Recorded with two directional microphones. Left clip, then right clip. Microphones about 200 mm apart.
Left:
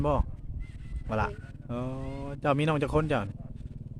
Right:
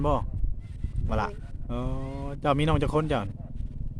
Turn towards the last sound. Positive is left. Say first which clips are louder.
# right 1 dB
turn(degrees=-5)  # may be behind; listen again after turning